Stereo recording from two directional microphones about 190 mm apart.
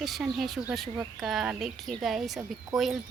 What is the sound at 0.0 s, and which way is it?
A woman's voice, centre (ahead or behind).